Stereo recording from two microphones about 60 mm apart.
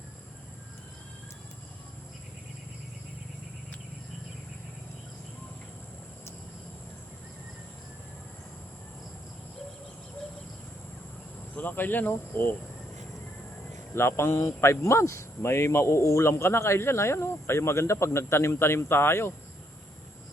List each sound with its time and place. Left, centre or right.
11.5 s speech: left
13.9 s speech: left